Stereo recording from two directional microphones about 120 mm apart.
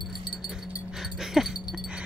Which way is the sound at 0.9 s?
5° right (ahead or behind).